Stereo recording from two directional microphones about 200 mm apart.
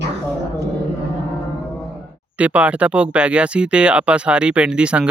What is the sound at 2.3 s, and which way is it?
Speech, 5° right (ahead or behind).